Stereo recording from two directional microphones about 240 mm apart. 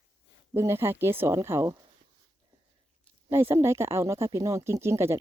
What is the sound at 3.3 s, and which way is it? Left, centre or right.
Speech, centre.